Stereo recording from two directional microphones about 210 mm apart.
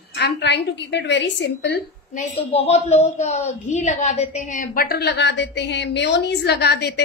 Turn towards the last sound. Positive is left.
turn(degrees=50)  # may be behind; listen again after turning